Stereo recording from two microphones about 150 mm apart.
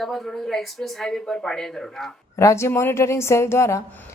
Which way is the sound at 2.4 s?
20° left (ahead or behind).